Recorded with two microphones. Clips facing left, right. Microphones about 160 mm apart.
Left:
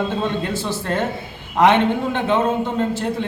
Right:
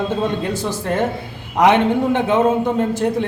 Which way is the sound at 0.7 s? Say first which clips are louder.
Right 3 dB; 15° right (ahead or behind).